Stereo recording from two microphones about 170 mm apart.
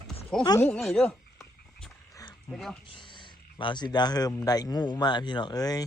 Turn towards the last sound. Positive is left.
turn(degrees=20)  # may be behind; listen again after turning